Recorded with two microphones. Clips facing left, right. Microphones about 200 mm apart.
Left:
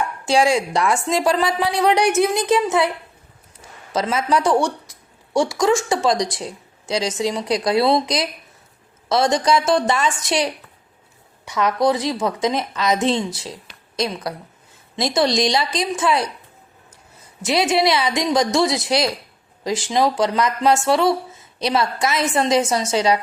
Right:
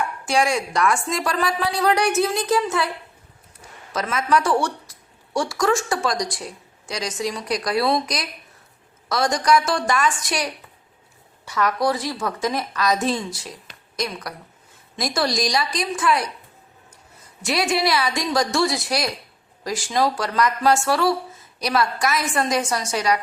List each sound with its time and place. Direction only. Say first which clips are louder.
0.3 s a woman's voice: left 4 dB; 25° left (ahead or behind)
3.9 s a woman's voice: left 2 dB; 25° left (ahead or behind)
17.4 s a woman's voice: left 4 dB; 20° left (ahead or behind)